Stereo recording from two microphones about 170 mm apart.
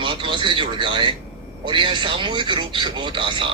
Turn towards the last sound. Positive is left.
turn(degrees=-30)  # may be behind; listen again after turning